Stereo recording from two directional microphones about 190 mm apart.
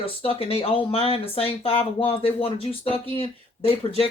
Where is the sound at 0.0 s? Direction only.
30° left (ahead or behind).